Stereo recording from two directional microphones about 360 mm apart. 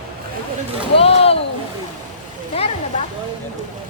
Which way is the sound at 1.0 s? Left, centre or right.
Centre.